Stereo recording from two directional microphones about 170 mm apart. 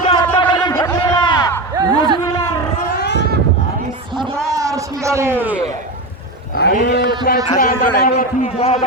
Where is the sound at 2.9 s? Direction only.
80° left.